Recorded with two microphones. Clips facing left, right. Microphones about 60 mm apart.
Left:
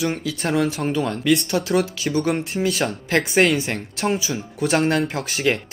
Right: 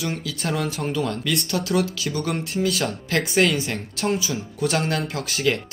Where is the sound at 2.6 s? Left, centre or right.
Left.